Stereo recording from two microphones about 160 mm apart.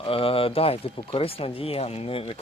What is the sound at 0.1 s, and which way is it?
Speech, 35° left (ahead or behind).